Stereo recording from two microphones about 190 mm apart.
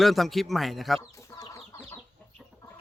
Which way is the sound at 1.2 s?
20° left (ahead or behind).